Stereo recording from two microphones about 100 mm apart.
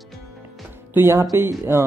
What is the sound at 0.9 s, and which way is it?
Speech, 25° right (ahead or behind).